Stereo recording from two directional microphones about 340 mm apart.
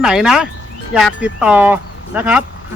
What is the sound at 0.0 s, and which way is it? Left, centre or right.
Speech, centre.